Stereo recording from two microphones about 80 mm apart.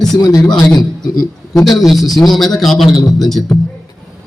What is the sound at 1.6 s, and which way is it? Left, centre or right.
A man's voice, centre.